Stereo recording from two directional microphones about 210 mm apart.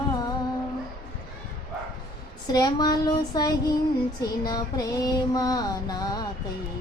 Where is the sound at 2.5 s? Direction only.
20° left (ahead or behind).